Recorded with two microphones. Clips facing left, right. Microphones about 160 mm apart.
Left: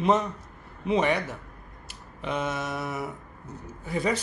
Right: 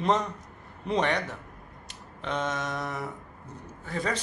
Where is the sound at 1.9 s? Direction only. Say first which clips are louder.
Left 1 dB; 5° left (ahead or behind).